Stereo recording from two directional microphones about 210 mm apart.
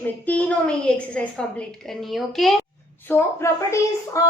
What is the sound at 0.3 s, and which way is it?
A woman's voice, 5° left (ahead or behind).